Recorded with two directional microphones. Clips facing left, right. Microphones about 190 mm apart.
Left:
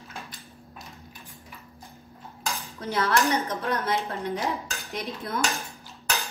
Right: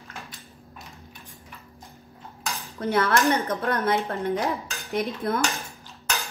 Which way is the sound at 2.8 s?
55° right (ahead or behind).